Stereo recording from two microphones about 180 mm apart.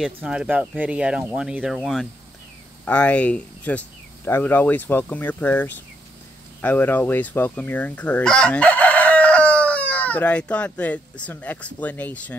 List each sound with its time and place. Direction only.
0.0 s speech: 5° right (ahead or behind)
6.6 s fowl: 10° left (ahead or behind)